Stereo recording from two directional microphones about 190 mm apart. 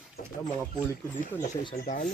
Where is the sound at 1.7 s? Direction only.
45° left (ahead or behind).